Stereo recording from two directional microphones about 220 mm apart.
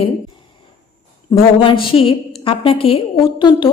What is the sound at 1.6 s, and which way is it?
A woman's voice, 25° left (ahead or behind).